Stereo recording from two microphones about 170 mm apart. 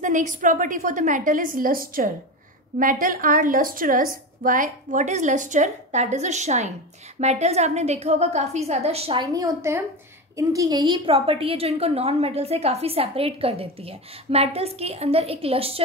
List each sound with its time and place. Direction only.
0.0 s a woman's voice: 45° right (ahead or behind); by 10.9 s 20° right (ahead or behind)
11.1 s a woman's voice: 35° right (ahead or behind)